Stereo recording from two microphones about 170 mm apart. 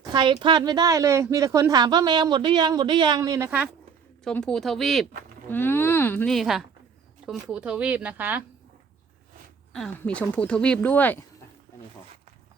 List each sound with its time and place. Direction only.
0.1 s a woman's voice: 25° right (ahead or behind)
4.2 s speech: 5° left (ahead or behind)
5.5 s speech: 10° left (ahead or behind); by 8.4 s 10° right (ahead or behind)
10.0 s speech: 10° left (ahead or behind)